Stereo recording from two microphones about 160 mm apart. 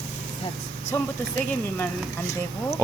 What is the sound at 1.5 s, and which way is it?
Speech, 10° left (ahead or behind).